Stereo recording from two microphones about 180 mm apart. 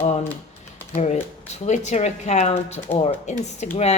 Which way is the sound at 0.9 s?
40° left (ahead or behind).